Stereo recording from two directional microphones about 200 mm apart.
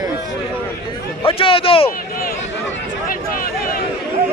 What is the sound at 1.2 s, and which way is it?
Speech, 25° left (ahead or behind).